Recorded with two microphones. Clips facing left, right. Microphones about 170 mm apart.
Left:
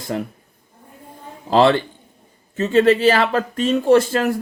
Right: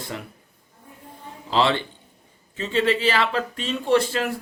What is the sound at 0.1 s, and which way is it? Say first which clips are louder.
Speech: left 11 dB; 50° left (ahead or behind).